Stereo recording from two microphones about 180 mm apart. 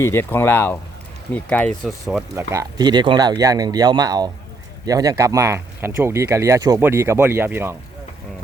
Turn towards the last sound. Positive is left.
turn(degrees=-15)  # may be behind; listen again after turning